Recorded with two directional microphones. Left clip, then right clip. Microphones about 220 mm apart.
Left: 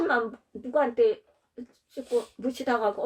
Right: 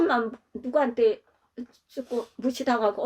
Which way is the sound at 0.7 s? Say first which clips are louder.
Right 1 dB; 45° right (ahead or behind).